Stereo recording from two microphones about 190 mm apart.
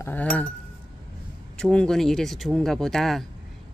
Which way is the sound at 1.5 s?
5° left (ahead or behind).